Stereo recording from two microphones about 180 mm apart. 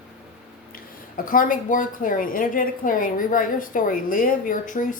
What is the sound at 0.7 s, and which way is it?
A woman's voice, 50° left (ahead or behind).